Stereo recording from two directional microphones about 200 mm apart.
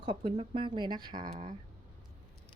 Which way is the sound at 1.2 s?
35° right (ahead or behind).